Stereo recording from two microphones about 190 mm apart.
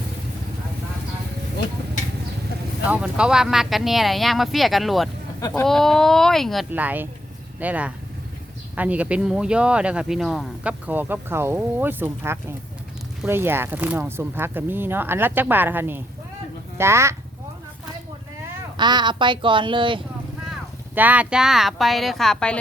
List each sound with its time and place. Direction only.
2.8 s speech: 5° right (ahead or behind)
6.7 s speech: 10° right (ahead or behind)
18.8 s speech: 25° right (ahead or behind)
20.9 s speech: 10° right (ahead or behind)